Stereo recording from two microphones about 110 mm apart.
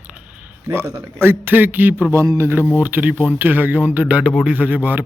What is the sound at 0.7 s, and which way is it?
A man's voice, 25° right (ahead or behind).